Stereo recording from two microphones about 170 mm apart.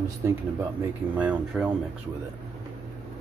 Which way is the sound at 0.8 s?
10° right (ahead or behind).